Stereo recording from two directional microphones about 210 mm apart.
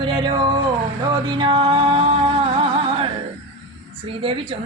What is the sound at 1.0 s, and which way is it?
Music, 20° right (ahead or behind).